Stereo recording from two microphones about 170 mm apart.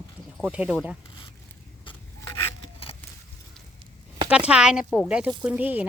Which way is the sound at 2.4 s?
35° left (ahead or behind).